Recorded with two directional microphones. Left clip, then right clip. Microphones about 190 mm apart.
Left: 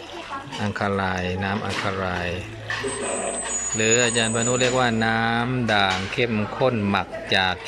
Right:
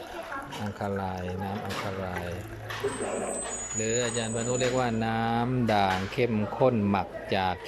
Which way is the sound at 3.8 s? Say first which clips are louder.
Left 9 dB; 5° left (ahead or behind).